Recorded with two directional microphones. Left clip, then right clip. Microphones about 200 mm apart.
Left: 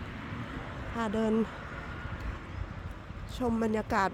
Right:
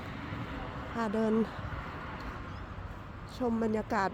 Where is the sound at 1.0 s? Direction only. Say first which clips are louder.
Even; 5° left (ahead or behind).